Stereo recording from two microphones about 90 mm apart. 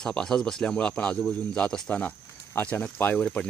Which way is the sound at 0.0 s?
10° left (ahead or behind).